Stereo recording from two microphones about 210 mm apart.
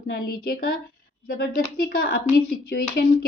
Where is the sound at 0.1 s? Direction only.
45° left (ahead or behind).